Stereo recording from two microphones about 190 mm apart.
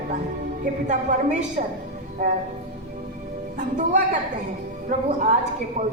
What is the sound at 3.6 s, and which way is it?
A woman's voice, 40° right (ahead or behind).